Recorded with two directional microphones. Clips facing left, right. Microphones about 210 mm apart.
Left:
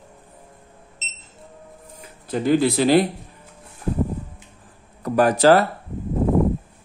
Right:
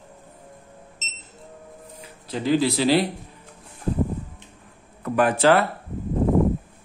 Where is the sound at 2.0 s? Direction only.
50° left (ahead or behind).